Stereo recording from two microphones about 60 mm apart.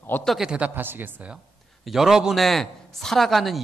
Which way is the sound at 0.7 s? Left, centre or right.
Right.